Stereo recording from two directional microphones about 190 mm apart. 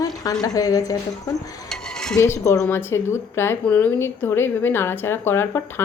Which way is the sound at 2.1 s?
15° left (ahead or behind).